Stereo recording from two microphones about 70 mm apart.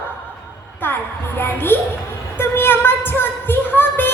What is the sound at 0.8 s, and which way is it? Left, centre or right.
Speech, left.